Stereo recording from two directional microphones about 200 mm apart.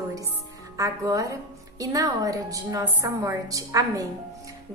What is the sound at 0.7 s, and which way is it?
A woman's voice, 15° right (ahead or behind).